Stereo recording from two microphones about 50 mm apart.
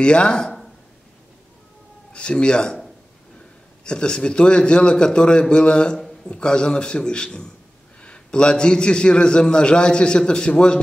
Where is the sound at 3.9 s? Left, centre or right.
Centre.